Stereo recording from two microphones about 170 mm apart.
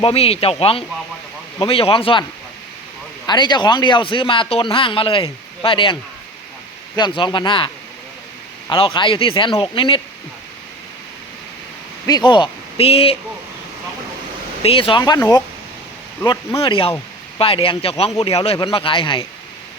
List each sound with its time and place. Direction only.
0.0 s speech: 35° left (ahead or behind)
3.2 s a man's voice: 25° left (ahead or behind)
8.7 s speech: 30° left (ahead or behind)
12.0 s speech: 25° left (ahead or behind)
14.6 s a man's voice: 35° left (ahead or behind)